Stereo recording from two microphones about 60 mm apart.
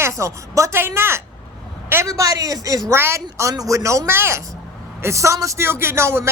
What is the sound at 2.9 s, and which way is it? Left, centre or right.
Speech, right.